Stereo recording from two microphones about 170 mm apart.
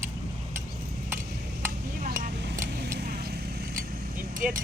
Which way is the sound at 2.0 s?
75° right (ahead or behind).